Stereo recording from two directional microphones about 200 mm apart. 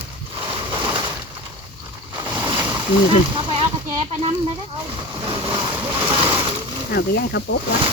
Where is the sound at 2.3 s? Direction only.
10° right (ahead or behind).